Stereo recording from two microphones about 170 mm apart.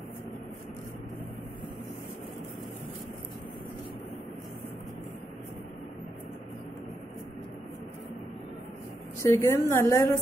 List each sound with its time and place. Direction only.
9.2 s a woman's voice: 15° left (ahead or behind)